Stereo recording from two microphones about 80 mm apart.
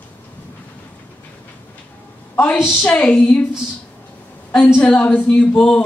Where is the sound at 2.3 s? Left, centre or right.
Left.